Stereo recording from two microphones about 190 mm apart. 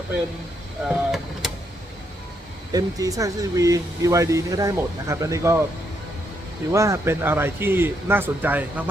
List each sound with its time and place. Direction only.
0.9 s vehicle: centre (ahead or behind)
2.7 s speech: 20° right (ahead or behind)
6.7 s speech: 15° right (ahead or behind)